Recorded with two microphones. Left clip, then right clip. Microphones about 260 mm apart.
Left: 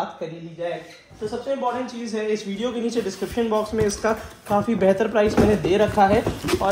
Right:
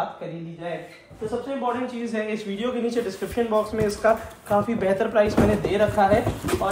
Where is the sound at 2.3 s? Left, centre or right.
Left.